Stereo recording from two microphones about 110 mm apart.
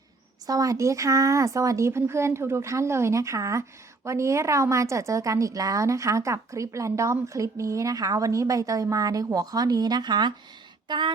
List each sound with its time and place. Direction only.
0.4 s a woman's voice: 30° right (ahead or behind)